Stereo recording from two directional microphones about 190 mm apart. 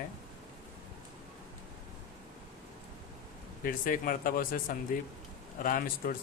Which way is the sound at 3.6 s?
45° left (ahead or behind).